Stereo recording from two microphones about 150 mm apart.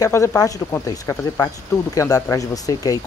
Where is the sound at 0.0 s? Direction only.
20° left (ahead or behind).